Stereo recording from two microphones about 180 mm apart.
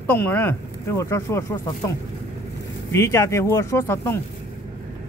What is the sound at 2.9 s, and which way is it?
Speech, 15° left (ahead or behind).